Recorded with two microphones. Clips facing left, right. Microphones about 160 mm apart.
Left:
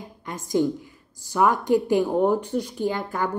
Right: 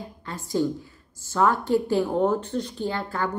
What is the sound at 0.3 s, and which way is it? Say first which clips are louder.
A woman's voice: left 2 dB; 15° left (ahead or behind).